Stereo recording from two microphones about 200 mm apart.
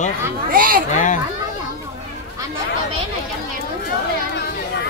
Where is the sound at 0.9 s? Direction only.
40° left (ahead or behind).